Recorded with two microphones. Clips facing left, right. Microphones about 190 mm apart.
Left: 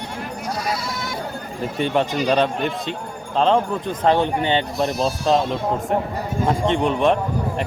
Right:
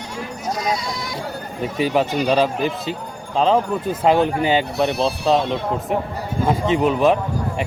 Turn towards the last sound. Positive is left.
turn(degrees=-5)  # may be behind; listen again after turning